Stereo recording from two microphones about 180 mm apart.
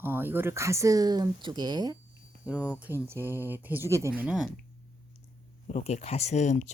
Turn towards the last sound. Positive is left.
turn(degrees=40)  # may be behind; listen again after turning